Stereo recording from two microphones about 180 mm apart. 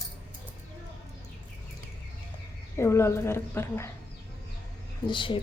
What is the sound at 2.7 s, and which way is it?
Speech, 15° left (ahead or behind).